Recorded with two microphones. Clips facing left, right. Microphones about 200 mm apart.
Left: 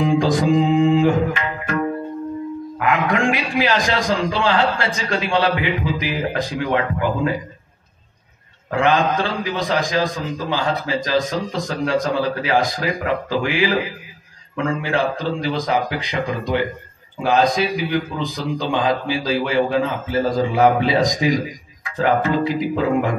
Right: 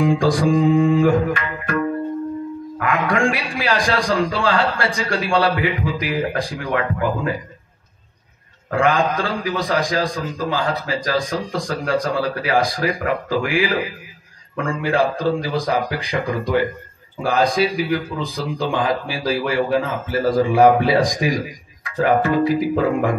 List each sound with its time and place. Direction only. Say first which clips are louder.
0.0 s a man's voice: even; 20° left (ahead or behind)
2.8 s a man's voice: even; 20° left (ahead or behind)
8.7 s a man's voice: even; 25° left (ahead or behind)